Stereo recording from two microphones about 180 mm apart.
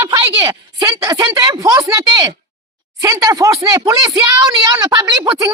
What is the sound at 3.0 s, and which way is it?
Speech, 15° right (ahead or behind).